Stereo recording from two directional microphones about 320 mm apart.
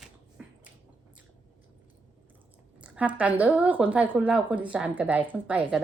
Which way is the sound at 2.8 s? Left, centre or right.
Centre.